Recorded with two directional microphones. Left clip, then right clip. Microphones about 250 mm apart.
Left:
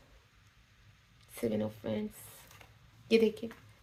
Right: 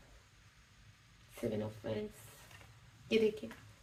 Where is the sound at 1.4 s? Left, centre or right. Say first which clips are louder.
Left 5 dB; left.